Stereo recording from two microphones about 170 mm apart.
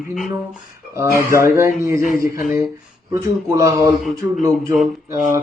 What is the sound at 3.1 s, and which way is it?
Speech, 15° right (ahead or behind).